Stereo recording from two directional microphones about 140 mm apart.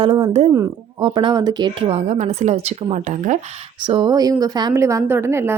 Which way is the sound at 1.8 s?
50° right (ahead or behind).